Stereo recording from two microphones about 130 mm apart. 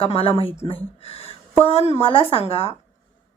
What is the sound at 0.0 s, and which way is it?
A woman's voice, 45° left (ahead or behind).